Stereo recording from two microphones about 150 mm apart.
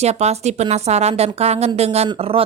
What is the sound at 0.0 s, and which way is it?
A woman's voice, 45° right (ahead or behind).